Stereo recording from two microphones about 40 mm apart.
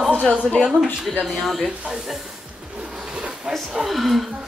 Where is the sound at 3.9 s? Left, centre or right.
Centre.